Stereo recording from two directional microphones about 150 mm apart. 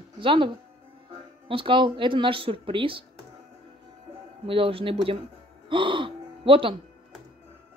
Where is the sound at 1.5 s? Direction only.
35° right (ahead or behind).